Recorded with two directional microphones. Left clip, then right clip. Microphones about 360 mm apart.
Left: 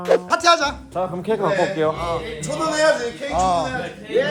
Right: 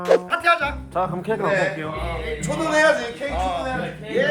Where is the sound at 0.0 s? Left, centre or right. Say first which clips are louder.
Left 1 dB; centre.